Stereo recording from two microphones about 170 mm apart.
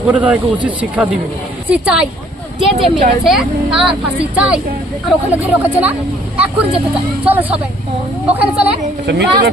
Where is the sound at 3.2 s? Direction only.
5° right (ahead or behind).